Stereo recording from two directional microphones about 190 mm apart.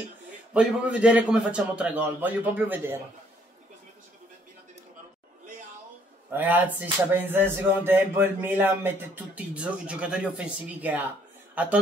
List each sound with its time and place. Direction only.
0.5 s speech: 5° right (ahead or behind)
6.3 s a man's voice: 10° right (ahead or behind)